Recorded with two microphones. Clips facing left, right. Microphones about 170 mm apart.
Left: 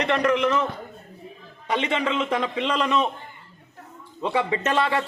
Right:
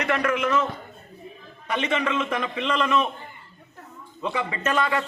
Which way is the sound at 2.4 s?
30° left (ahead or behind).